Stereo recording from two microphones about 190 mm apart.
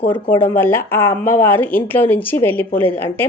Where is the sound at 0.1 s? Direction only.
10° left (ahead or behind).